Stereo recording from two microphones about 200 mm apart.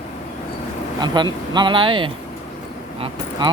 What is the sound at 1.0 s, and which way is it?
Speech, 20° right (ahead or behind).